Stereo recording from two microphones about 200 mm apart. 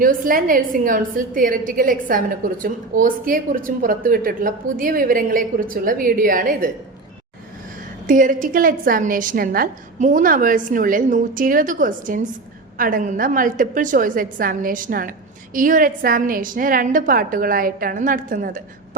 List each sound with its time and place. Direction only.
0.0 s a woman's voice: 45° right (ahead or behind)
8.0 s a woman's voice: 40° right (ahead or behind)